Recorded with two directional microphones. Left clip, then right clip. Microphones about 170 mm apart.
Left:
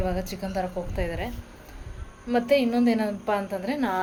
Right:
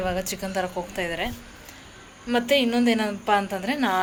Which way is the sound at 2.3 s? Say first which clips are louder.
Right 1 dB; centre (ahead or behind).